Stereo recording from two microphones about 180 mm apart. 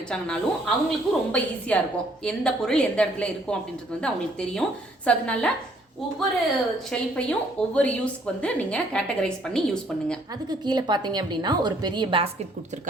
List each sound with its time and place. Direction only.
0.1 s a woman's voice: centre (ahead or behind)
6.9 s a woman's voice: 5° left (ahead or behind)
10.7 s a woman's voice: 25° right (ahead or behind)